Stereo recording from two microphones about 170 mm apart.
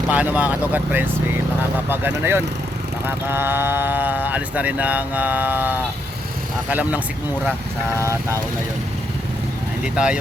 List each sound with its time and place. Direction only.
0.1 s speech: 10° right (ahead or behind)
9.8 s speech: 5° right (ahead or behind)